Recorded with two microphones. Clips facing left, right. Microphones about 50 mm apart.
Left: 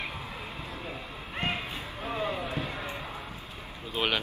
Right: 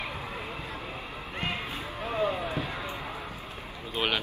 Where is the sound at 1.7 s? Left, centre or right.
Right.